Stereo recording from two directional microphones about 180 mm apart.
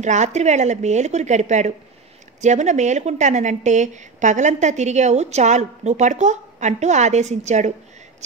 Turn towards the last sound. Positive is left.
turn(degrees=-40)  # may be behind; listen again after turning